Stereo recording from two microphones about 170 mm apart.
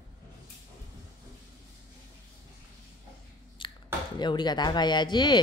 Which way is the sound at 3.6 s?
30° left (ahead or behind).